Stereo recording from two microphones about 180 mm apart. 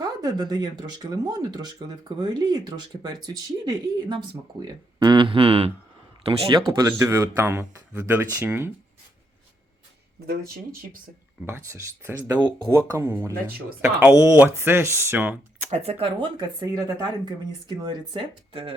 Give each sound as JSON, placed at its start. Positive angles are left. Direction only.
{"t": 0.0, "sound": "speech", "side_deg": -20}
{"t": 10.2, "sound": "speech", "side_deg": -60}
{"t": 11.4, "sound": "speech", "side_deg": -15}
{"t": 15.7, "sound": "speech", "side_deg": -35}
{"t": 16.6, "sound": "speech", "side_deg": -25}